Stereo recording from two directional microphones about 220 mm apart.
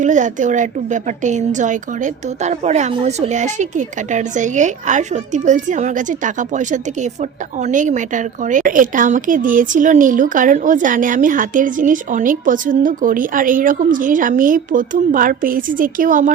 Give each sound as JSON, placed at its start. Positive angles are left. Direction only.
{"t": 0.0, "sound": "a woman's voice", "side_deg": -35}